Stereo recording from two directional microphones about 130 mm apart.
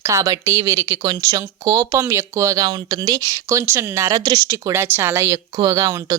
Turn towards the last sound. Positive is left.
turn(degrees=-25)  # may be behind; listen again after turning